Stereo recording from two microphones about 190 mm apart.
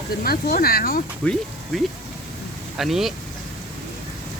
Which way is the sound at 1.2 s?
5° left (ahead or behind).